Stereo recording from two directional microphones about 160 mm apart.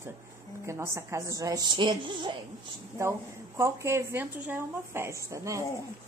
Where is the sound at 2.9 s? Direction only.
15° right (ahead or behind).